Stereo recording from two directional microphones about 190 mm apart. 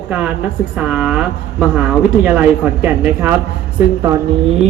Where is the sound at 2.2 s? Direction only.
5° right (ahead or behind).